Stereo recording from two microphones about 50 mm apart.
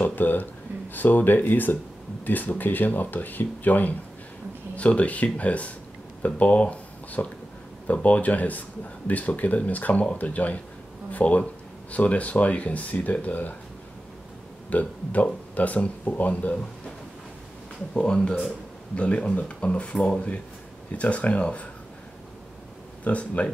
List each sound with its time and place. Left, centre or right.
0.0 s speech: left
14.7 s speech: left
17.9 s speech: centre
23.0 s speech: left